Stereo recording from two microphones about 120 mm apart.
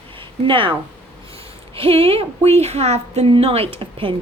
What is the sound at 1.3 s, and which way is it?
A woman's voice, 50° right (ahead or behind).